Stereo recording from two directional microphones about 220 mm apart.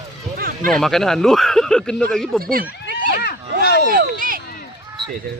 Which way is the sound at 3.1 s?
50° left (ahead or behind).